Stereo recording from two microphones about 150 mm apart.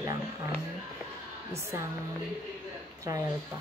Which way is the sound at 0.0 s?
20° right (ahead or behind).